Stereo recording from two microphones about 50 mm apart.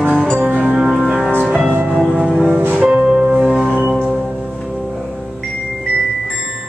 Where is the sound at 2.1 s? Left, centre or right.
Centre.